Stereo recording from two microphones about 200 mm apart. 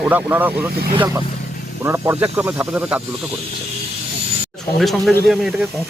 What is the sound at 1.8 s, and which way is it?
Speech, 15° right (ahead or behind).